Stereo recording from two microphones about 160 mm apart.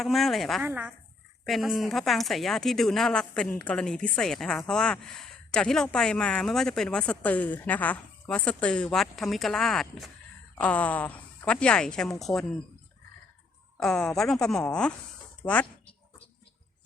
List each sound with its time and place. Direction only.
0.0 s a woman's voice: centre (ahead or behind)
0.7 s speech: 10° right (ahead or behind)
1.5 s a woman's voice: centre (ahead or behind)
13.7 s a woman's voice: 5° left (ahead or behind)
15.4 s speech: 15° left (ahead or behind)